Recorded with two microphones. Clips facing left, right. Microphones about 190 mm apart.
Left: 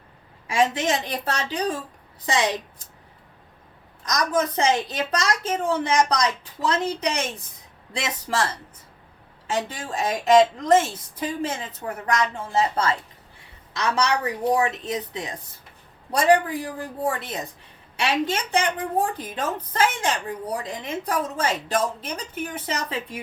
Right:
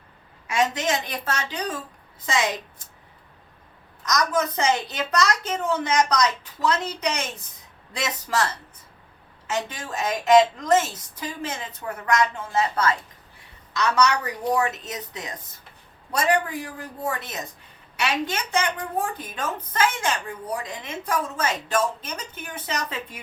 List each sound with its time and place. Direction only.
0.4 s a woman's voice: 30° left (ahead or behind)
4.0 s a woman's voice: 30° left (ahead or behind)
9.5 s a woman's voice: 30° left (ahead or behind)